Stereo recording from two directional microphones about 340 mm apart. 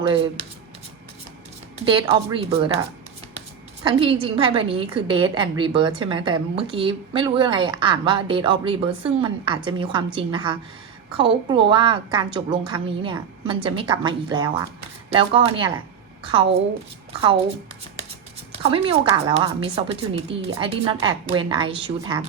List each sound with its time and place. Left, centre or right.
1.8 s a woman's voice: centre
3.8 s a woman's voice: centre
18.5 s a woman's voice: centre